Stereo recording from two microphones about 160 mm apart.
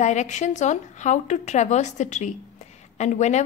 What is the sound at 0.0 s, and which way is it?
Speech, 50° left (ahead or behind).